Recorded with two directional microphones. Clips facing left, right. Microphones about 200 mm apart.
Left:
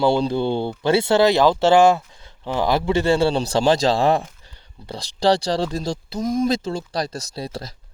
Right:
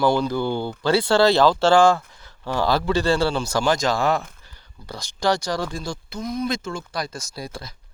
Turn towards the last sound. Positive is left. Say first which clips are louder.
# left 4 dB
turn(degrees=35)  # may be behind; listen again after turning